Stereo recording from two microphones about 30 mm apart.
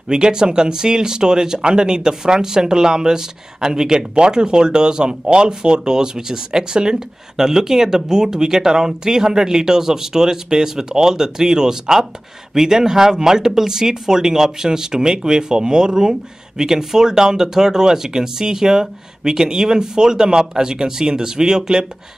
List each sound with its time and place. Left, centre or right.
0.1 s speech: right